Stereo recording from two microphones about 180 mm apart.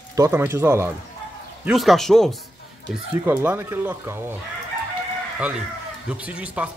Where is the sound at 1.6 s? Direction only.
Centre (ahead or behind).